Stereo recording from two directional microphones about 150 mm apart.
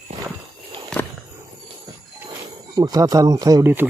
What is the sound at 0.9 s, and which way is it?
Walk, 5° left (ahead or behind).